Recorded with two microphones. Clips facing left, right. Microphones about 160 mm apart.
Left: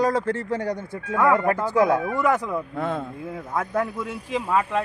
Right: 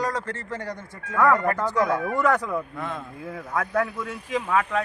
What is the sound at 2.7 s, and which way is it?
Speech, 50° left (ahead or behind).